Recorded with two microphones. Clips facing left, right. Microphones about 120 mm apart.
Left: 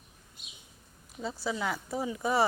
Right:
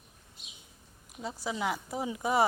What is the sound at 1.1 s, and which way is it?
Speech, 10° right (ahead or behind).